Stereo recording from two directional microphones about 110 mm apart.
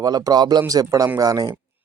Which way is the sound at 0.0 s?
35° right (ahead or behind).